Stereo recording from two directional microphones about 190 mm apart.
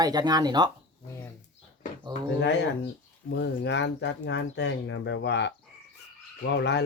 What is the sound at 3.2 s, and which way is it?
Speech, 70° left (ahead or behind).